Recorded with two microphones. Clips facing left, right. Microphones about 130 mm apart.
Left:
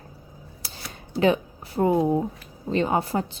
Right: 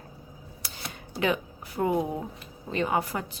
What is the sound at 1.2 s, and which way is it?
A woman's voice, 30° left (ahead or behind).